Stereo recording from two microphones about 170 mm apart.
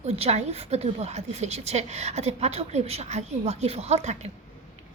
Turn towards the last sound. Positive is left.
turn(degrees=-40)  # may be behind; listen again after turning